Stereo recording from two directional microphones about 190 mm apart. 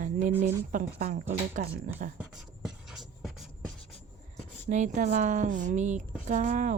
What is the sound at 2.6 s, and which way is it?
Writing, centre (ahead or behind).